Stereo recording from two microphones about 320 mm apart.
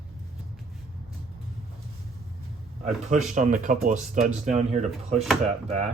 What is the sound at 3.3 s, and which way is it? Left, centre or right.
Speech, right.